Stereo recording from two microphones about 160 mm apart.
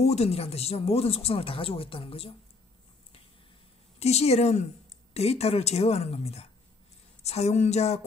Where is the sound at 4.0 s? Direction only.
40° left (ahead or behind).